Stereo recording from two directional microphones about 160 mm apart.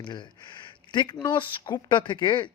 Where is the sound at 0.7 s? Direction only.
30° left (ahead or behind).